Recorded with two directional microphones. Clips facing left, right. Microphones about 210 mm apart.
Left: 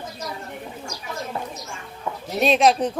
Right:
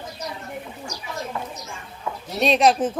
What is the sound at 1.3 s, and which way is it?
Speech, 30° left (ahead or behind).